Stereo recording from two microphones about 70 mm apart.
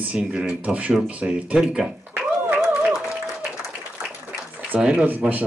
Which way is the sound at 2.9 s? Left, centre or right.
Centre.